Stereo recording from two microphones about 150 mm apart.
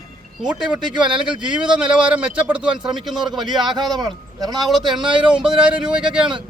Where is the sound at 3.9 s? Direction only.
25° right (ahead or behind).